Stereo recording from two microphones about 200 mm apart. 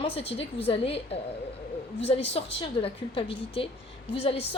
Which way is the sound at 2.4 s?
30° left (ahead or behind).